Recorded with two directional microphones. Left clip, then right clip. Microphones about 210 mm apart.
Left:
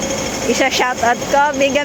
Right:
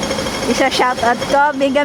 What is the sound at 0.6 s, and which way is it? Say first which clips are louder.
Speech: right 1 dB; 20° right (ahead or behind).